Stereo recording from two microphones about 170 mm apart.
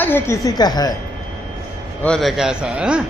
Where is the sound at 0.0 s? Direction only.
15° left (ahead or behind).